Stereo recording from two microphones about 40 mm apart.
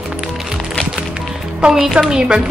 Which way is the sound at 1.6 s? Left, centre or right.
Centre.